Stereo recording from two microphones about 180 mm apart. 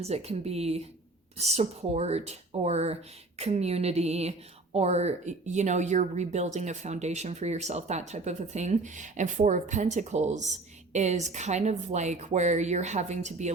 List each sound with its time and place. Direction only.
0.0 s speech: 35° right (ahead or behind)